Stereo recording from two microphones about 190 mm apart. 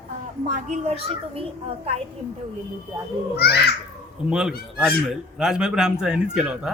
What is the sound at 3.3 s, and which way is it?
Speech, 60° left (ahead or behind).